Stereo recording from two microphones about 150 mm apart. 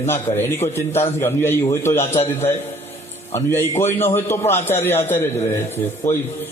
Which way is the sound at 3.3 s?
15° left (ahead or behind).